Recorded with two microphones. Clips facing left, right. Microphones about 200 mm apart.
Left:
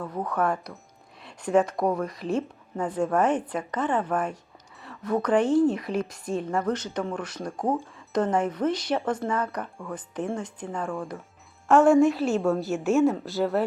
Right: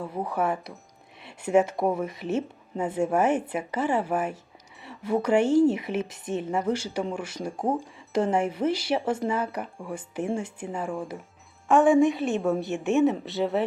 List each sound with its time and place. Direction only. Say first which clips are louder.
0.0 s speech: left 1 dB; 10° right (ahead or behind)
5.4 s speech: right 1 dB; 25° right (ahead or behind)
5.7 s speech: left 1 dB; 5° right (ahead or behind)
11.7 s a woman's voice: left 1 dB; centre (ahead or behind)